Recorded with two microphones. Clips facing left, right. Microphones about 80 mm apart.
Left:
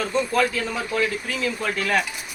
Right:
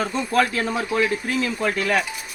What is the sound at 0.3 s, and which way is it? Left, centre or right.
Speech, right.